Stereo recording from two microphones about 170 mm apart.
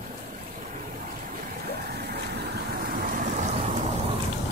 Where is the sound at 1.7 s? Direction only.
70° right (ahead or behind); by 3.8 s 45° right (ahead or behind).